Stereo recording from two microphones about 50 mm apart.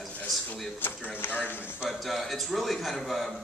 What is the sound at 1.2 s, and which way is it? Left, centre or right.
Speech, left.